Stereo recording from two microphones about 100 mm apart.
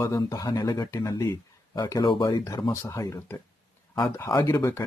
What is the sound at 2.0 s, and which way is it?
Speech, 50° left (ahead or behind).